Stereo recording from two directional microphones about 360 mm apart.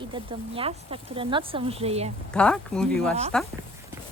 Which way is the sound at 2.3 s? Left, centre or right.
Centre.